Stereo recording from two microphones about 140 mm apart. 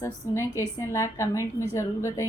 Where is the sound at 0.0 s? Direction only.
20° left (ahead or behind).